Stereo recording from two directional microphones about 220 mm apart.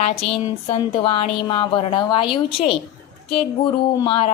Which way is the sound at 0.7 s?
25° left (ahead or behind).